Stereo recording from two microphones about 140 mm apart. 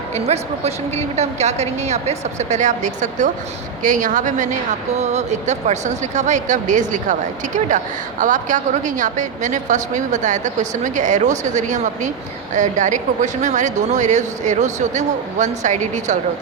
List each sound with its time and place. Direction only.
0.3 s a woman's voice: 50° right (ahead or behind)